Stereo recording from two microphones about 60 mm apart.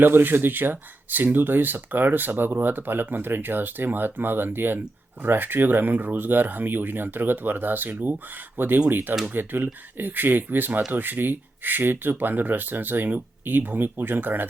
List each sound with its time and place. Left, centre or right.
0.0 s speech: right